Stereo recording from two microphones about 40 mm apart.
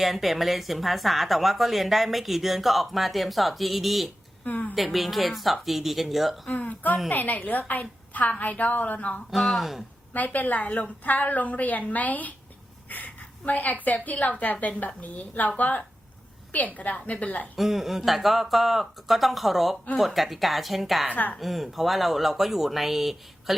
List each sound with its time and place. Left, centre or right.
0.0 s a woman's voice: centre
4.4 s speech: left
4.7 s a woman's voice: centre
6.5 s a woman's voice: left
9.3 s a woman's voice: centre
10.1 s speech: left
12.9 s a sound: left
13.8 s a woman's voice: left
17.2 s a woman's voice: left
17.6 s a woman's voice: centre
21.1 s speech: left
21.3 s a woman's voice: centre